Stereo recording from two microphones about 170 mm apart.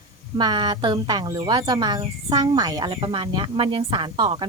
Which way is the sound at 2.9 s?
35° right (ahead or behind).